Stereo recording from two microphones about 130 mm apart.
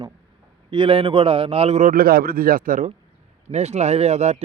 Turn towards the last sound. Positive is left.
turn(degrees=-60)  # may be behind; listen again after turning